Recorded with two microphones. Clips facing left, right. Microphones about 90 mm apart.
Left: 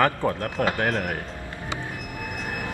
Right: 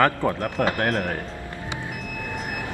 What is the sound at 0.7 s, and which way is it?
Speech, 25° left (ahead or behind).